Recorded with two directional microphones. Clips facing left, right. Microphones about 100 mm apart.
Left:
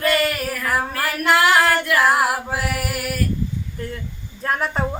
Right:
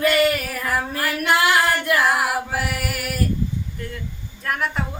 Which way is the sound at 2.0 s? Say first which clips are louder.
Left 2 dB; 25° left (ahead or behind).